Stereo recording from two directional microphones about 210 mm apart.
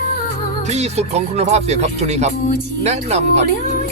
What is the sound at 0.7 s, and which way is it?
Speech, 30° right (ahead or behind).